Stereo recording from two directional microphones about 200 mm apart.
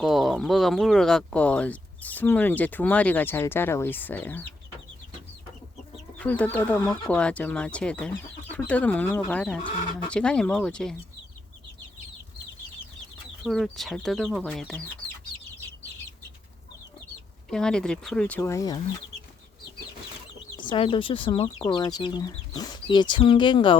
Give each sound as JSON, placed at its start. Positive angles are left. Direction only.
{"t": 0.0, "sound": "speech", "side_deg": 0}
{"t": 6.1, "sound": "speech", "side_deg": 10}
{"t": 13.4, "sound": "speech", "side_deg": 0}
{"t": 17.5, "sound": "speech", "side_deg": 5}
{"t": 20.6, "sound": "speech", "side_deg": 25}